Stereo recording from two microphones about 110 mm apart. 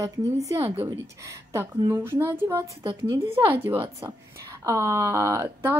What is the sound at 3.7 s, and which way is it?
A woman's voice, 30° right (ahead or behind).